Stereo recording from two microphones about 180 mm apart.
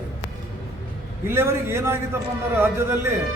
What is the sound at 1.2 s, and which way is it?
A man's voice, 15° right (ahead or behind).